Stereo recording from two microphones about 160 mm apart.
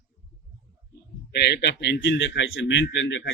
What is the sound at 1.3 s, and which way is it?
A man's voice, 90° left.